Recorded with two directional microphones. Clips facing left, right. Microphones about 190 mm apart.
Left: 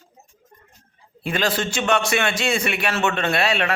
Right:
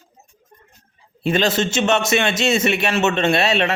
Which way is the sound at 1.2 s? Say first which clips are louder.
Right 5 dB; 25° right (ahead or behind).